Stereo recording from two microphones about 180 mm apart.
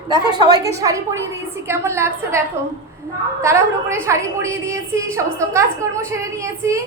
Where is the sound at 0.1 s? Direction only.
25° right (ahead or behind).